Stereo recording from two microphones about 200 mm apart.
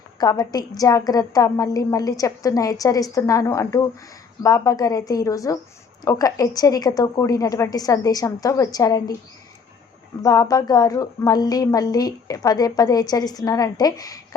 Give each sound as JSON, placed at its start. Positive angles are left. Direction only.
{"t": 0.2, "sound": "a woman's voice", "side_deg": 20}
{"t": 10.2, "sound": "a woman's voice", "side_deg": 15}